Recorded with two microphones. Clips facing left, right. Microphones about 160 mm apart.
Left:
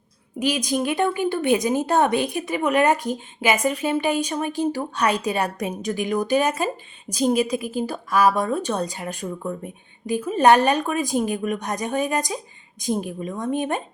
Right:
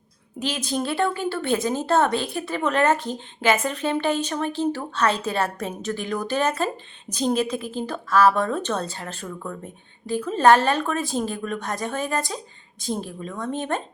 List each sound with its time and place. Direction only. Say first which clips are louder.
0.3 s a woman's voice: left 4 dB; 10° left (ahead or behind)